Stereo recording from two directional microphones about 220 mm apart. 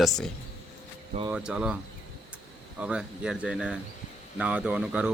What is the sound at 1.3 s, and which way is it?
Speech, 5° right (ahead or behind).